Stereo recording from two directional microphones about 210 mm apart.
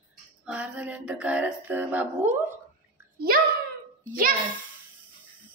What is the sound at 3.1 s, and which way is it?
Speech, 45° right (ahead or behind).